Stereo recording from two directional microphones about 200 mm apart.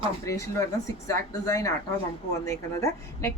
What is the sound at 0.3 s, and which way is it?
Speech, 15° left (ahead or behind).